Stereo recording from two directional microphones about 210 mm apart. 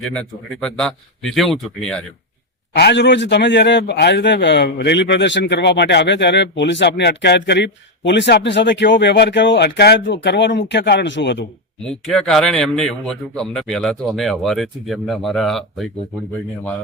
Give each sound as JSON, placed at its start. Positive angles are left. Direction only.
{"t": 0.0, "sound": "a man's voice", "side_deg": 5}
{"t": 2.7, "sound": "a man's voice", "side_deg": 55}
{"t": 11.8, "sound": "a man's voice", "side_deg": 5}